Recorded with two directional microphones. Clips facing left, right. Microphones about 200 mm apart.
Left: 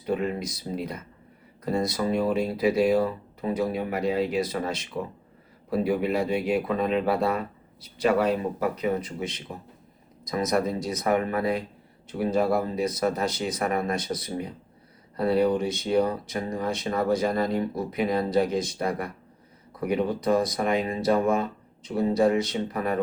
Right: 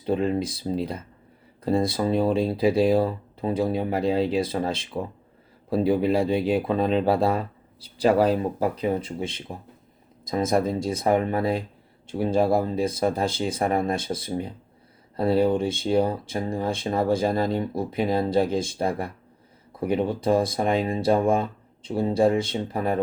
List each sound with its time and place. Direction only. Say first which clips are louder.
0.0 s speech: right 4 dB; 30° right (ahead or behind)